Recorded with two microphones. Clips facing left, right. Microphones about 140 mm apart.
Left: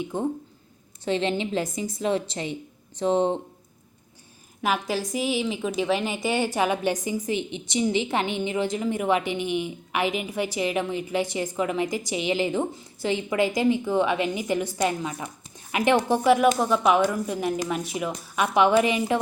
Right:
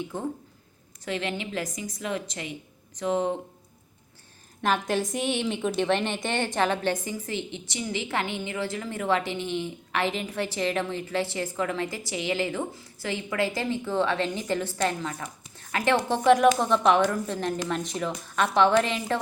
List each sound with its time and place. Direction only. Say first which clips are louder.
0.0 s a woman's voice: left 5 dB; 20° left (ahead or behind)
4.6 s a woman's voice: even; 5° left (ahead or behind)